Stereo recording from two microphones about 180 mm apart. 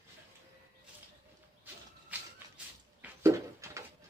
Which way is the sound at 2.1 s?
10° right (ahead or behind).